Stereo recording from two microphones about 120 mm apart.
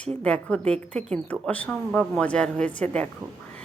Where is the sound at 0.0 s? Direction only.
10° left (ahead or behind).